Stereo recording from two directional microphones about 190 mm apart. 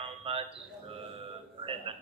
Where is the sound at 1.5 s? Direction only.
30° right (ahead or behind).